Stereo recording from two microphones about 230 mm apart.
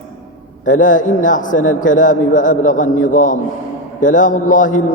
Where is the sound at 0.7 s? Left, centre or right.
Left.